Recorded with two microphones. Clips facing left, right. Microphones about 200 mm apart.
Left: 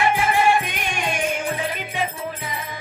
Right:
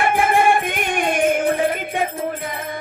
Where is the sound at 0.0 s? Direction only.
50° right (ahead or behind).